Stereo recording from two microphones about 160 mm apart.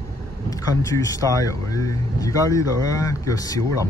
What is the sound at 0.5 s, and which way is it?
Speech, 20° left (ahead or behind).